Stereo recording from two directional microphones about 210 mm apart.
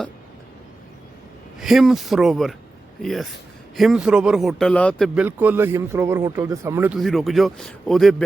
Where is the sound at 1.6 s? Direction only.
Centre (ahead or behind).